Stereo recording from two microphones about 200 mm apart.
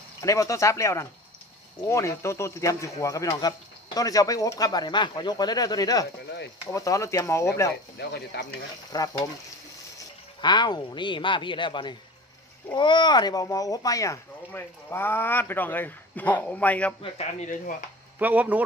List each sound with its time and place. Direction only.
0.2 s speech: 15° left (ahead or behind)
8.0 s speech: 55° left (ahead or behind)
8.9 s speech: 20° left (ahead or behind)
10.4 s speech: 20° left (ahead or behind); by 16.9 s 5° left (ahead or behind)
17.0 s speech: 30° left (ahead or behind)
18.2 s speech: 10° right (ahead or behind)